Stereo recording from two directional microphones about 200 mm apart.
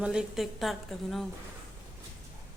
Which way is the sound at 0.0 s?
5° right (ahead or behind).